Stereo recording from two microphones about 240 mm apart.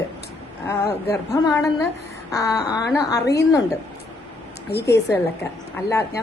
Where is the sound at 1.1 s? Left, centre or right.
Centre.